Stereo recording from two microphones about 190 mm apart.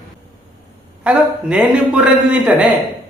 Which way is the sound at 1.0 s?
5° right (ahead or behind).